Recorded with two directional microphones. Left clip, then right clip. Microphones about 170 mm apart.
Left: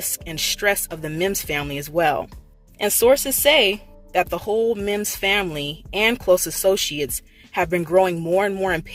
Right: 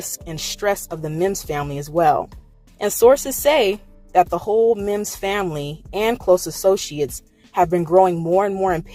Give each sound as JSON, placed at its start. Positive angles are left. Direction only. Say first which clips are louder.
{"t": 0.0, "sound": "speech", "louder": "left 3 dB", "side_deg": 10}
{"t": 7.6, "sound": "speech", "louder": "right 3 dB", "side_deg": 20}